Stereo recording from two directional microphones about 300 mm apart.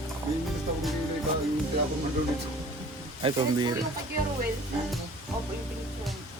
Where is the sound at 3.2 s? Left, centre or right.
Centre.